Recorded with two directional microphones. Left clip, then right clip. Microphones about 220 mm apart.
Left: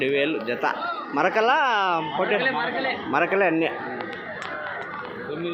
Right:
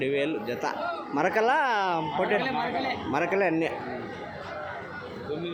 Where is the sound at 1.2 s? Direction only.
15° right (ahead or behind).